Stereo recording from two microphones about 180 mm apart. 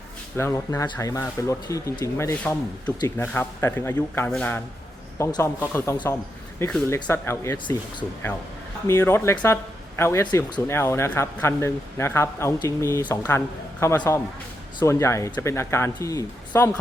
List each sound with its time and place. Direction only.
0.3 s speech: 15° left (ahead or behind)